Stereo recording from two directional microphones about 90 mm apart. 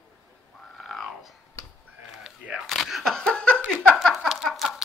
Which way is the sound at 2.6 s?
Centre (ahead or behind).